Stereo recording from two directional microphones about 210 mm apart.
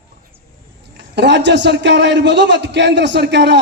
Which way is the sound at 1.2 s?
55° right (ahead or behind).